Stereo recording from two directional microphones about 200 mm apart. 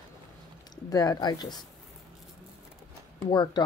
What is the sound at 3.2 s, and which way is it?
Speech, 20° left (ahead or behind).